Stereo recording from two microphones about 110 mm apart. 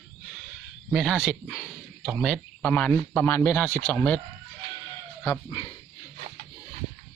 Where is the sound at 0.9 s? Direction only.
Centre (ahead or behind).